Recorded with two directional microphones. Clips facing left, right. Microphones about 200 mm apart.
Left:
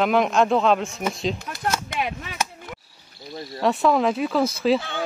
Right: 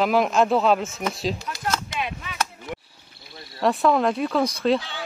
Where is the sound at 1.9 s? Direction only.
50° left (ahead or behind).